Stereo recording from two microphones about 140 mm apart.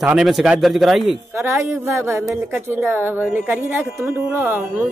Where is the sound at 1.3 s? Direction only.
20° right (ahead or behind).